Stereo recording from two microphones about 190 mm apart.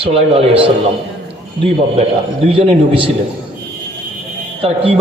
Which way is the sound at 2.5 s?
30° right (ahead or behind).